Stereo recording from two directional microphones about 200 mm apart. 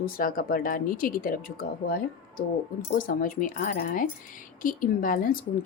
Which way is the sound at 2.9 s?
45° left (ahead or behind).